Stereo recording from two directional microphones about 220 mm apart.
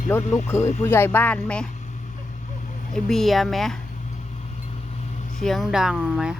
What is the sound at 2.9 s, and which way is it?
Speech, centre (ahead or behind).